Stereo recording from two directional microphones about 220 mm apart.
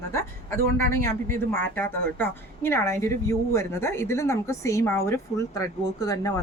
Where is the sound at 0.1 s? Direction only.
10° left (ahead or behind).